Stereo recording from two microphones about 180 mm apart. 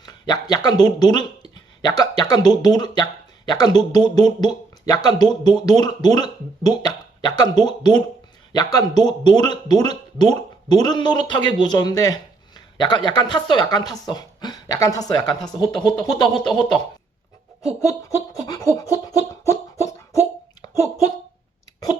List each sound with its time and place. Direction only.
0.0 s speech: 20° left (ahead or behind)
16.3 s speech: 5° left (ahead or behind)
18.4 s a sound: 20° left (ahead or behind)